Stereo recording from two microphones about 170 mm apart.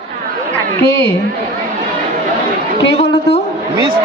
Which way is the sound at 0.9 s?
90° left.